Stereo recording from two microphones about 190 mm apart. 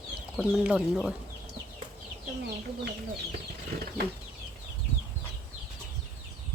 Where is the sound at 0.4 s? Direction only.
5° right (ahead or behind).